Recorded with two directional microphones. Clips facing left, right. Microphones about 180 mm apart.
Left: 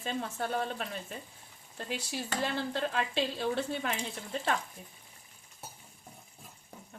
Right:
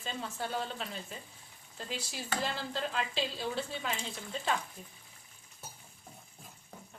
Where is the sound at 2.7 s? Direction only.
60° left (ahead or behind).